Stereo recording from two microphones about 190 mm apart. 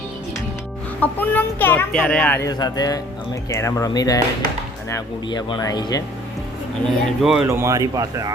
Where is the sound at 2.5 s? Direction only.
20° left (ahead or behind).